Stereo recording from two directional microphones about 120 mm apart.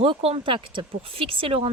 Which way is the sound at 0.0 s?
55° right (ahead or behind).